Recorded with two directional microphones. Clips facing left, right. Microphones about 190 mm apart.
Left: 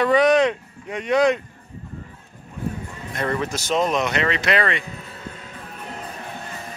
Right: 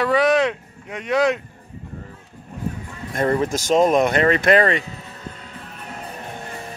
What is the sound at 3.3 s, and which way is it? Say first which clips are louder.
Speech: right 5 dB; 40° right (ahead or behind).